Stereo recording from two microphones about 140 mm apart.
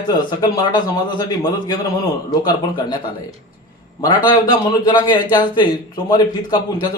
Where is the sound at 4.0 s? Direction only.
30° left (ahead or behind).